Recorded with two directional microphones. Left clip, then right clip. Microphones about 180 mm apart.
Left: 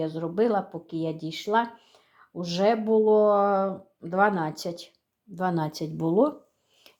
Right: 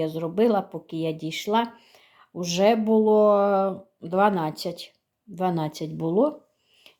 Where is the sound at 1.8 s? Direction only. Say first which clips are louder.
Right 3 dB; 15° right (ahead or behind).